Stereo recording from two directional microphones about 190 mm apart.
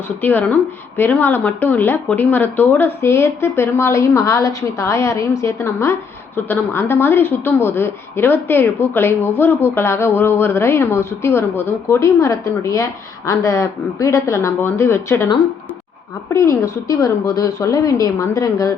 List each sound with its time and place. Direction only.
0.2 s speech: 10° left (ahead or behind)
16.3 s speech: 15° left (ahead or behind)